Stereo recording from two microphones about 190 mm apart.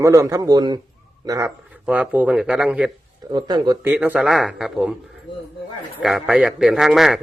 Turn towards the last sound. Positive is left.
turn(degrees=0)  # may be behind; listen again after turning